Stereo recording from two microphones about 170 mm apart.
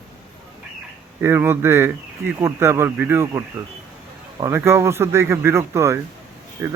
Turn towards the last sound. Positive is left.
turn(degrees=-15)  # may be behind; listen again after turning